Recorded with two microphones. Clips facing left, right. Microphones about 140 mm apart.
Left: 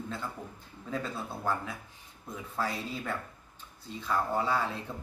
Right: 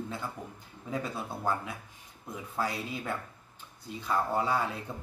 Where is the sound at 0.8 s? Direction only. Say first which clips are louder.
Right 1 dB; 10° right (ahead or behind).